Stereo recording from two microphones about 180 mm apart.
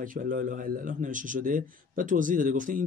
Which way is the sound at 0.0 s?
50° right (ahead or behind).